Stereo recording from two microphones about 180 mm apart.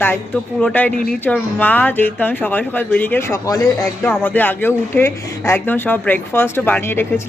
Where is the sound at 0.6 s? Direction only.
10° left (ahead or behind).